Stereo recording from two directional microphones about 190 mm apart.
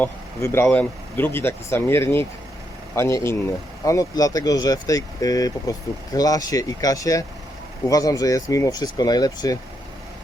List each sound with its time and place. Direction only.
0.0 s speech: 15° left (ahead or behind)